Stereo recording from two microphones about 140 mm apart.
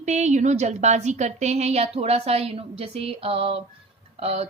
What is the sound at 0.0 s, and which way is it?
A woman's voice, 55° right (ahead or behind).